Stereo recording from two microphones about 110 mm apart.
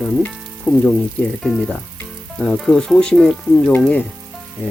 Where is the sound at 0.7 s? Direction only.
20° left (ahead or behind).